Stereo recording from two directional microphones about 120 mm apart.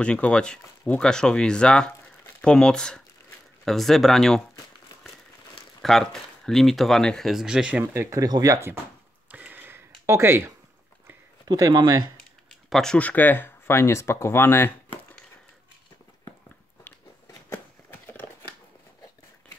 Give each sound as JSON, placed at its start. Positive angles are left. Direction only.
{"t": 0.0, "sound": "speech", "side_deg": 10}
{"t": 5.8, "sound": "speech", "side_deg": 5}
{"t": 7.8, "sound": "speech", "side_deg": -20}
{"t": 9.3, "sound": "a sound", "side_deg": -15}
{"t": 11.4, "sound": "speech", "side_deg": -35}
{"t": 12.2, "sound": "speech", "side_deg": 5}
{"t": 18.0, "sound": "a sound", "side_deg": 15}